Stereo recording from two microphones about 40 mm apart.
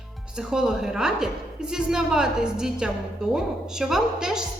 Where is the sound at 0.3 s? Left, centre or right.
Centre.